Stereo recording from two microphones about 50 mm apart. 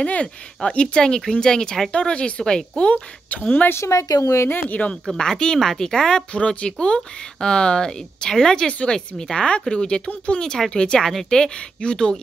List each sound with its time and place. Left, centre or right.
0.0 s speech: left
3.3 s speech: left
3.6 s speech: left
4.5 s speech: left
5.0 s speech: centre
6.3 s speech: left
10.4 s speech: centre